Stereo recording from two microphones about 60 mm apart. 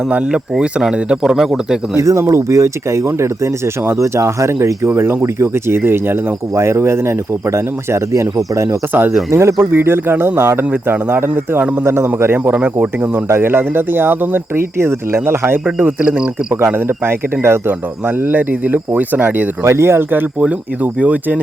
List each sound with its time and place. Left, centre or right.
0.6 s speech: centre
2.0 s speech: right
4.9 s speech: right
8.9 s speech: right
9.3 s speech: right
11.9 s speech: right
12.5 s speech: right
13.2 s speech: right
15.8 s speech: right
16.7 s speech: right
18.3 s speech: right
19.6 s speech: right